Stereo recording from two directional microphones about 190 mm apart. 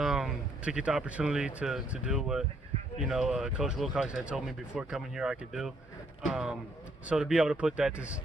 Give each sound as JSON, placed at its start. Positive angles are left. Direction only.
{"t": 0.0, "sound": "speech", "side_deg": -5}